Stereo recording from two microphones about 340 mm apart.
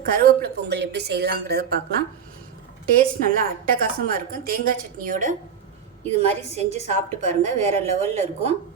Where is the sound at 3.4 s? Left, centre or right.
Right.